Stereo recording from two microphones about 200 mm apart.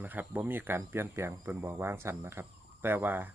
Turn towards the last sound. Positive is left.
turn(degrees=-10)  # may be behind; listen again after turning